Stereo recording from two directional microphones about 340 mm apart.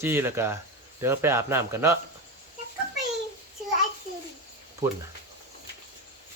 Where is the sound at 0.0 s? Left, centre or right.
Centre.